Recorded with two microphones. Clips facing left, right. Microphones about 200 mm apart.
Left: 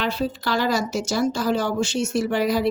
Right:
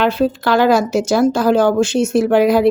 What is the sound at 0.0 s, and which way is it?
Speech, 55° right (ahead or behind).